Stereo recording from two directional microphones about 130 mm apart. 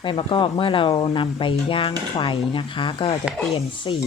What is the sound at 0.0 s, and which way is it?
Speech, 40° left (ahead or behind).